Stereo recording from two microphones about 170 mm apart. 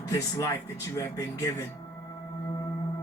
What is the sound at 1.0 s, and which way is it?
Speech, 20° left (ahead or behind).